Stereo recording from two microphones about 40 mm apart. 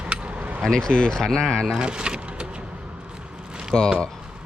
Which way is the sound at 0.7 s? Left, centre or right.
Centre.